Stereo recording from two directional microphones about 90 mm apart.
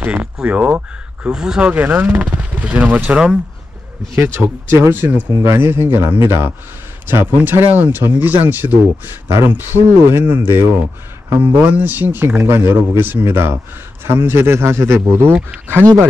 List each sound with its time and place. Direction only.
0.0 s speech: 15° right (ahead or behind)
1.7 s speech: 20° right (ahead or behind)
4.4 s speech: 30° right (ahead or behind)
5.3 s speech: 30° right (ahead or behind)